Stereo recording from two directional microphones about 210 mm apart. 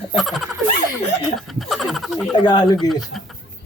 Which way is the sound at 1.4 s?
Centre (ahead or behind).